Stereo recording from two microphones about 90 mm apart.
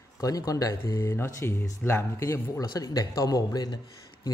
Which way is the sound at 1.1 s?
30° left (ahead or behind).